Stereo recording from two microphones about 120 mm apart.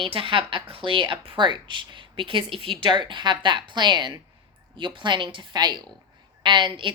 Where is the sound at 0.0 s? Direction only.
45° right (ahead or behind).